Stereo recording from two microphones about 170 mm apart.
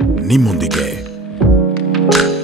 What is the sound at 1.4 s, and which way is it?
Music, centre (ahead or behind).